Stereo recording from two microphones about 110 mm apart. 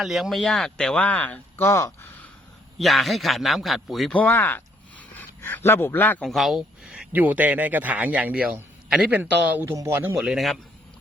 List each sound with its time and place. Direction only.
0.0 s speech: centre (ahead or behind); by 2.3 s 20° left (ahead or behind)
2.7 s a man's voice: centre (ahead or behind)
4.1 s speech: 15° left (ahead or behind)
6.2 s a sound: centre (ahead or behind)
7.1 s speech: 15° right (ahead or behind)
10.2 s a man's voice: 5° right (ahead or behind)